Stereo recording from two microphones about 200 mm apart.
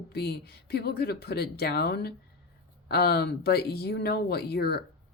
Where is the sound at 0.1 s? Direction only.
55° left (ahead or behind).